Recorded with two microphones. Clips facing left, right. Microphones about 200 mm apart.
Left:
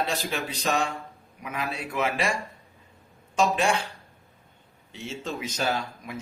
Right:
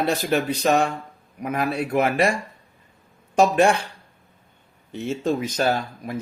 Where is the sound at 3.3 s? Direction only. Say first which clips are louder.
Right 6 dB; 60° right (ahead or behind).